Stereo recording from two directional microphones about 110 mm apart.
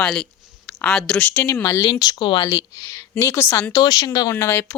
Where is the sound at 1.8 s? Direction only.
40° left (ahead or behind).